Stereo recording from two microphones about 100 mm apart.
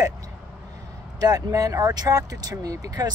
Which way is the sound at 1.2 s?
35° right (ahead or behind).